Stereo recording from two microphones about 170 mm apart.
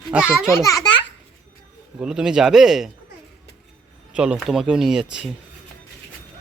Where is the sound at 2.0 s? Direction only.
5° right (ahead or behind).